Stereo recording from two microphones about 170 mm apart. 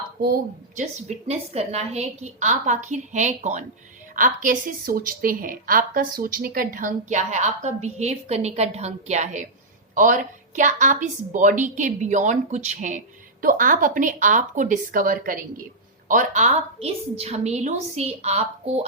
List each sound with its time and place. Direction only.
0.2 s a woman's voice: 60° right (ahead or behind)
0.8 s a woman's voice: 40° right (ahead or behind)
13.4 s a woman's voice: 55° right (ahead or behind); by 18.9 s 40° right (ahead or behind)